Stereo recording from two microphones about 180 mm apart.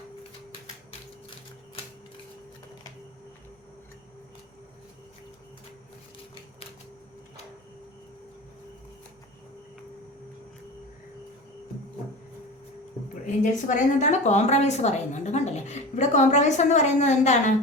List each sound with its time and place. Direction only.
13.2 s a woman's voice: 45° left (ahead or behind)